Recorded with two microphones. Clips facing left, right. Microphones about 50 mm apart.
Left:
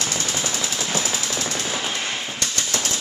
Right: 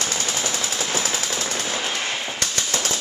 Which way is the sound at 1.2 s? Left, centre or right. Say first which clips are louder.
Even; right.